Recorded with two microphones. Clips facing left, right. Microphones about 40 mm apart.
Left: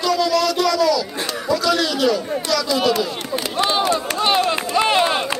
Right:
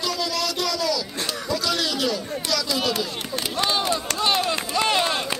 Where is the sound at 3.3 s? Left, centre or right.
Left.